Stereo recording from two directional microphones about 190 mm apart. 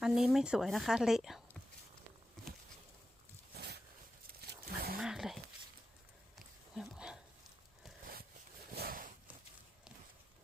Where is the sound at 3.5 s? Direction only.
60° right (ahead or behind).